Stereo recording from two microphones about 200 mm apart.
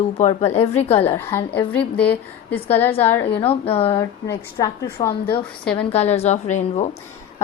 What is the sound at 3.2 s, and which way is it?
A woman's voice, 30° left (ahead or behind).